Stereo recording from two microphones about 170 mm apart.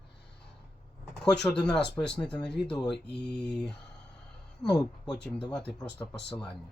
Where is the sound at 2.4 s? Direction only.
80° left.